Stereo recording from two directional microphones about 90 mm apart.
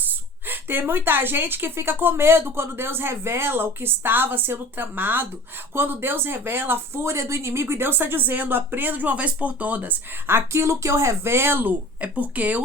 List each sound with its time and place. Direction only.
0.4 s speech: 20° right (ahead or behind)